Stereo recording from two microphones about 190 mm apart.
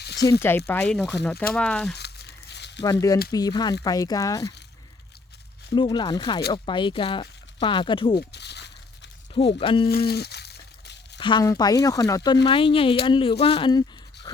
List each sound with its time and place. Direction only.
0.2 s speech: 15° left (ahead or behind)
2.0 s crumpling: 60° left (ahead or behind)
2.8 s speech: 20° left (ahead or behind)
5.7 s speech: 25° left (ahead or behind)
8.3 s crumpling: 60° left (ahead or behind)
9.3 s speech: 30° left (ahead or behind)
9.9 s a sound: 55° left (ahead or behind)
11.2 s speech: 25° left (ahead or behind)